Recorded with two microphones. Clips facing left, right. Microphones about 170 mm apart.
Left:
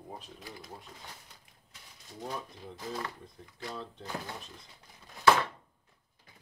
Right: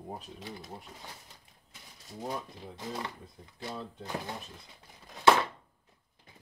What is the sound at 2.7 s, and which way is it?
Speech, 20° right (ahead or behind).